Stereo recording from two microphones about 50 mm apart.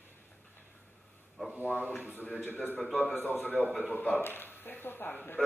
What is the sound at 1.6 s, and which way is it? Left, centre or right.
Speech, right.